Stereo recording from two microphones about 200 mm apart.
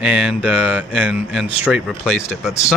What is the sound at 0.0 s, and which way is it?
Speech, 5° right (ahead or behind).